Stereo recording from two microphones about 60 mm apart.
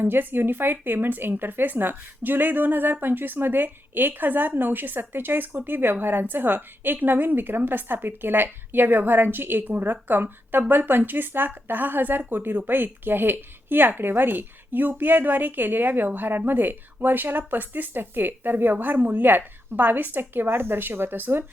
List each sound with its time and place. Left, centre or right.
0.0 s a woman's voice: right